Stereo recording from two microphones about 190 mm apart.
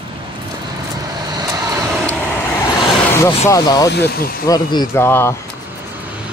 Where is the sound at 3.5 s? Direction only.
20° left (ahead or behind).